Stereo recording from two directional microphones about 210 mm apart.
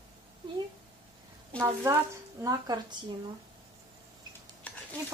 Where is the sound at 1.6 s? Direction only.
15° right (ahead or behind).